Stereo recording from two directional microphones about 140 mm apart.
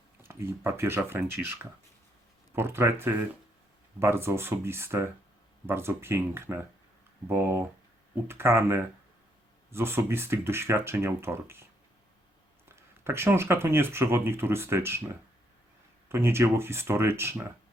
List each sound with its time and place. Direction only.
0.2 s speech: 20° right (ahead or behind)
12.6 s speech: 15° right (ahead or behind)